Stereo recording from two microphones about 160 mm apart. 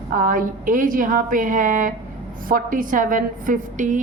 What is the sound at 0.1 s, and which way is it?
A woman's voice, 60° right (ahead or behind).